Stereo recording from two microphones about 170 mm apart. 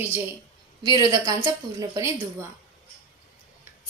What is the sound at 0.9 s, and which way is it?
A woman's voice, 20° right (ahead or behind).